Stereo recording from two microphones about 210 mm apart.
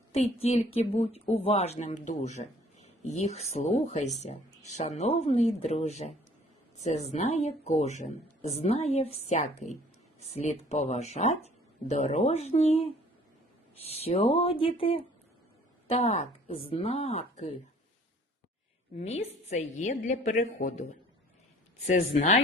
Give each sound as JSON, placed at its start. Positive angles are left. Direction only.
{"t": 0.4, "sound": "speech", "side_deg": 30}
{"t": 13.8, "sound": "speech", "side_deg": 30}
{"t": 18.9, "sound": "speech", "side_deg": 30}